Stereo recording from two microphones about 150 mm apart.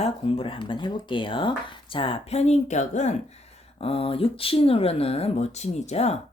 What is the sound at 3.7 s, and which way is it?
Speech, 40° left (ahead or behind).